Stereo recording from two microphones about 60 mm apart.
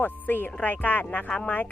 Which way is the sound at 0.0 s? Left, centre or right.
Left.